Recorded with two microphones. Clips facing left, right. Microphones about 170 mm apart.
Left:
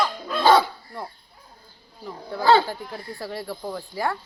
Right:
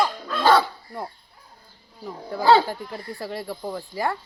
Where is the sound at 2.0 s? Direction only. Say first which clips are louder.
Right 1 dB; 5° right (ahead or behind).